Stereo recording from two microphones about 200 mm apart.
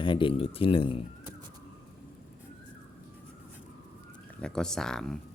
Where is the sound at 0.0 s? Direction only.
25° left (ahead or behind).